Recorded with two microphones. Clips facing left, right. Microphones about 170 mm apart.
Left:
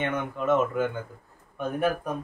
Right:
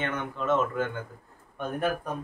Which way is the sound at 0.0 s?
10° left (ahead or behind).